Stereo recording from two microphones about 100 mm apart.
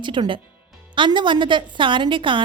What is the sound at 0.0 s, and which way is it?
A woman's voice, 50° right (ahead or behind).